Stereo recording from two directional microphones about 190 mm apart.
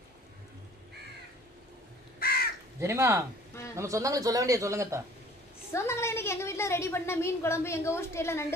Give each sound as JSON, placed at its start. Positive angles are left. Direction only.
{"t": 2.1, "sound": "crow", "side_deg": 55}
{"t": 2.8, "sound": "speech", "side_deg": -15}
{"t": 5.7, "sound": "a woman's voice", "side_deg": 15}